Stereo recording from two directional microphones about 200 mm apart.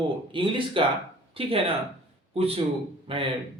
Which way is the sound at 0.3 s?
25° right (ahead or behind).